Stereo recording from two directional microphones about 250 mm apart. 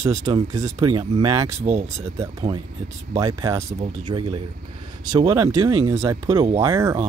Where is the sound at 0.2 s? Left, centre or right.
Centre.